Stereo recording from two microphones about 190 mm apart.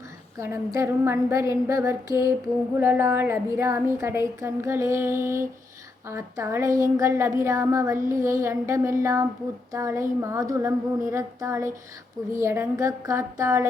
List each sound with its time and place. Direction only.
0.4 s a woman's voice: 15° right (ahead or behind)